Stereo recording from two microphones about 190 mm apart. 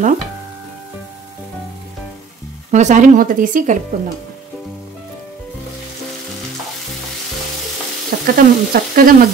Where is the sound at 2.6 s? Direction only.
40° right (ahead or behind).